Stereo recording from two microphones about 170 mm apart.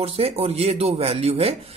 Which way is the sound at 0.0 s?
35° right (ahead or behind).